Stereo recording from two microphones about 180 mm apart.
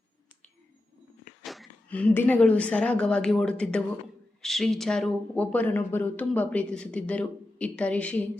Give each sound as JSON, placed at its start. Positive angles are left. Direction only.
{"t": 1.4, "sound": "a woman's voice", "side_deg": 0}